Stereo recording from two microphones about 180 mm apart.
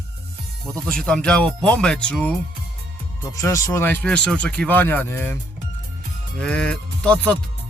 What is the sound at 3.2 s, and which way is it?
Speech, 15° left (ahead or behind).